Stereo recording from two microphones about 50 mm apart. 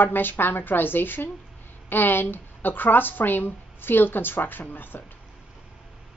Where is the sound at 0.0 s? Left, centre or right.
Left.